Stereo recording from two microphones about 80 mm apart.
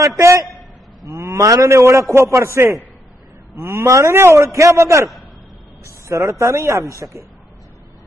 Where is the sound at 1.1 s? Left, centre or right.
Right.